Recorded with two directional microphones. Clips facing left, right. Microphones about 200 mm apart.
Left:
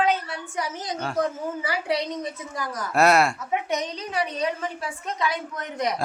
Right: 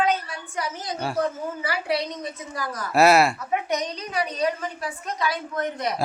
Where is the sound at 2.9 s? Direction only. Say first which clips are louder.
Right 2 dB; 5° right (ahead or behind).